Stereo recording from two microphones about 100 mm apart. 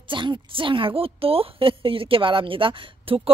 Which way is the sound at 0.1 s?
55° right (ahead or behind).